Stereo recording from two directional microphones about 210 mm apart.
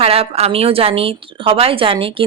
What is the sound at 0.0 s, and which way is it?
A woman's voice, 30° right (ahead or behind).